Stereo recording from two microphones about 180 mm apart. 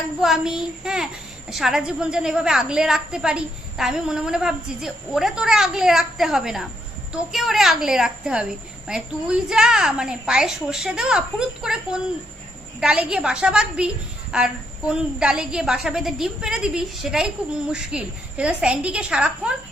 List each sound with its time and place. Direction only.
0.2 s a woman's voice: 5° right (ahead or behind)